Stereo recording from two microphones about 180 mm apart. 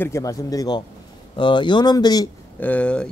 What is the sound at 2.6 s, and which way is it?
Speech, 10° left (ahead or behind).